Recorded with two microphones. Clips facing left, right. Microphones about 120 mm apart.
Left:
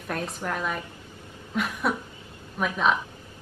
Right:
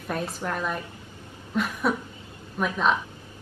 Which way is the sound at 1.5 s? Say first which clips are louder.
Right 2 dB; centre (ahead or behind).